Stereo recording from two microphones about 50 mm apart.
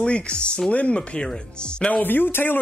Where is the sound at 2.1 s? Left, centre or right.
Left.